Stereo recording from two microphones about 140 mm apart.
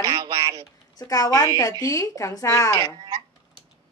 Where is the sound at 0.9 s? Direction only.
25° left (ahead or behind).